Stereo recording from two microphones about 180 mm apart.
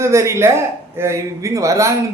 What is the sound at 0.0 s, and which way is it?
Speech, 15° right (ahead or behind).